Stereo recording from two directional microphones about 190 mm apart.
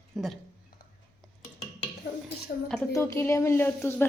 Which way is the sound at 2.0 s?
55° left (ahead or behind).